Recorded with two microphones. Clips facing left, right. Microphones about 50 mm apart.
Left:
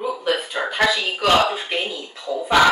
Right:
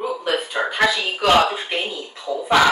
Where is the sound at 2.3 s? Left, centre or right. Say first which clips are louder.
Even; centre.